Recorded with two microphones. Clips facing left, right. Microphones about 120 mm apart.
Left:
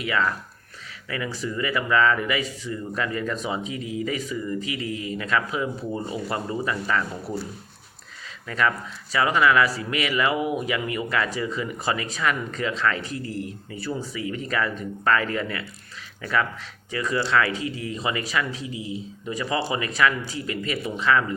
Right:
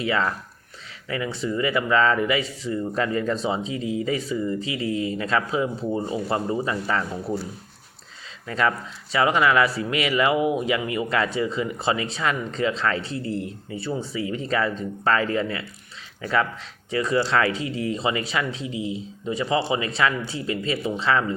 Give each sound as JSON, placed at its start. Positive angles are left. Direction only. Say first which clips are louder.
{"t": 0.0, "sound": "speech", "louder": "right 1 dB", "side_deg": -30}
{"t": 8.4, "sound": "speech", "louder": "right 1 dB", "side_deg": -30}